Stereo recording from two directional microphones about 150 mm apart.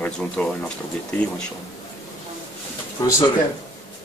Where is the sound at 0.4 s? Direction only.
10° left (ahead or behind).